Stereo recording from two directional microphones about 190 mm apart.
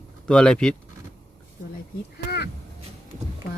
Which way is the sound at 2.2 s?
60° left (ahead or behind).